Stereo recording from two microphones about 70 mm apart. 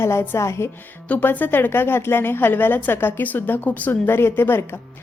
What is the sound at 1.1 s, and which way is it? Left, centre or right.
A woman's voice, left.